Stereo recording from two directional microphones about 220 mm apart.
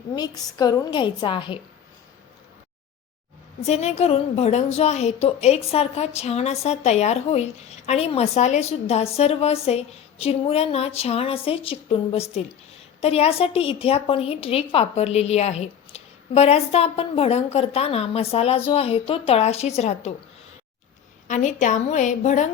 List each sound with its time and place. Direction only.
0.2 s a woman's voice: 20° left (ahead or behind)
3.7 s a woman's voice: 30° left (ahead or behind)
21.2 s a woman's voice: 35° left (ahead or behind)